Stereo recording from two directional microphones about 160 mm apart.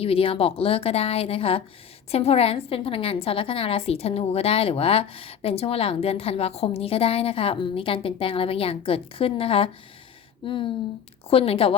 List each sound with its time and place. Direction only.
0.0 s a woman's voice: 35° left (ahead or behind)